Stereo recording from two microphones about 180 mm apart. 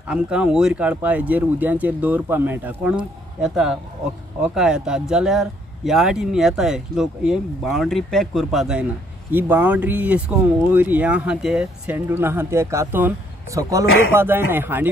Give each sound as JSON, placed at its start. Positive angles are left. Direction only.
{"t": 0.1, "sound": "speech", "side_deg": -5}